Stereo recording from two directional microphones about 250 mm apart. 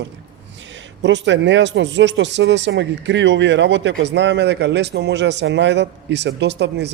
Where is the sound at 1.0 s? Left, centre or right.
Right.